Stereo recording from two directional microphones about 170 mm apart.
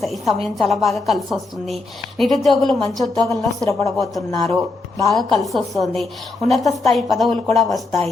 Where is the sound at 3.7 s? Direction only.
20° left (ahead or behind).